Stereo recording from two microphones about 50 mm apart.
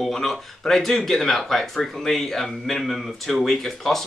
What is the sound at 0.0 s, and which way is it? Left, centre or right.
Speech, centre.